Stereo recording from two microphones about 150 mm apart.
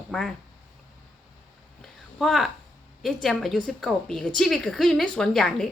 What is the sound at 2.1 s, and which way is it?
A woman's voice, centre (ahead or behind).